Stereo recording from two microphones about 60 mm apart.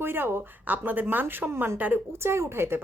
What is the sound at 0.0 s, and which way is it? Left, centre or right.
A woman's voice, right.